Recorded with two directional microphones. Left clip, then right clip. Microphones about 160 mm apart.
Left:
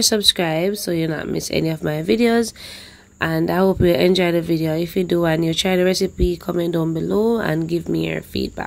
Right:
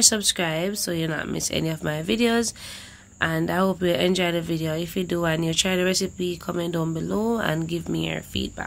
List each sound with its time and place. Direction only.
0.0 s a woman's voice: 25° left (ahead or behind)